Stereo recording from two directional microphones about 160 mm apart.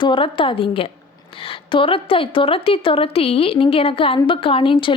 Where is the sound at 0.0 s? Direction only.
35° left (ahead or behind).